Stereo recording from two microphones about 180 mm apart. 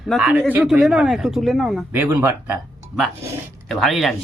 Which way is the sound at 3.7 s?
Centre (ahead or behind).